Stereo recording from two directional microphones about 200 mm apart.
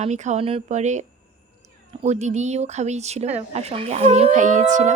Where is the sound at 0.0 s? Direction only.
35° right (ahead or behind).